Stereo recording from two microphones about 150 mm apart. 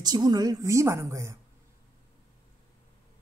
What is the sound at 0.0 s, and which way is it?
A woman's voice, 30° right (ahead or behind).